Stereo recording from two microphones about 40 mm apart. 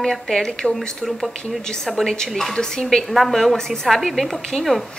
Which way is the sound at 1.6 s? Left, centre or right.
Centre.